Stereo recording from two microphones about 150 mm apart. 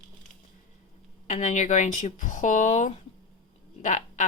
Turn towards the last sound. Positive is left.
turn(degrees=55)  # may be behind; listen again after turning